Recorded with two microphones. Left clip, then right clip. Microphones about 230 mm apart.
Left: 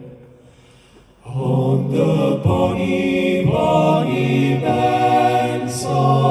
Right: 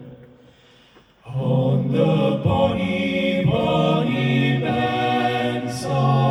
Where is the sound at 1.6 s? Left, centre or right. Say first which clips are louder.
Left 2 dB; left.